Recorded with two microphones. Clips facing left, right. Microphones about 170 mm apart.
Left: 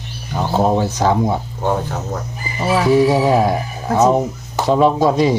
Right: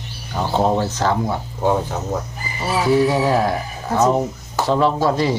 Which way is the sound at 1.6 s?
5° right (ahead or behind).